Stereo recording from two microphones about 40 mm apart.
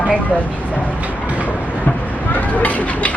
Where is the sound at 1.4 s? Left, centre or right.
Left.